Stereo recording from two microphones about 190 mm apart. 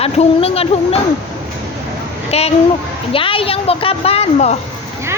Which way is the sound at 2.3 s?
35° left (ahead or behind).